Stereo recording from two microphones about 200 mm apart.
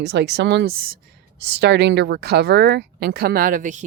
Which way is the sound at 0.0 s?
60° right (ahead or behind).